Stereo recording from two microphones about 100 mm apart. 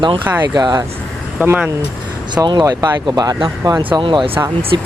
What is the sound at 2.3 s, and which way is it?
Speech, 45° right (ahead or behind).